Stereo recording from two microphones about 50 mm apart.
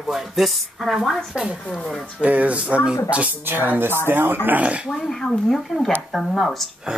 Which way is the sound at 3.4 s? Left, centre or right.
Right.